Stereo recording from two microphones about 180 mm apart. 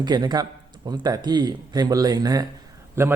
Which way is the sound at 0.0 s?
25° right (ahead or behind).